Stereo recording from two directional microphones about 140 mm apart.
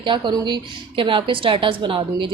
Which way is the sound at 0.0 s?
35° right (ahead or behind).